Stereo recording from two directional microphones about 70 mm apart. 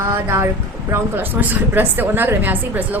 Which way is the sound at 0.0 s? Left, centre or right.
Right.